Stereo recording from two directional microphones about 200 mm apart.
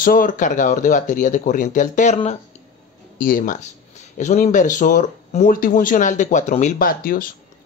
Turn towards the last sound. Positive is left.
turn(degrees=45)  # may be behind; listen again after turning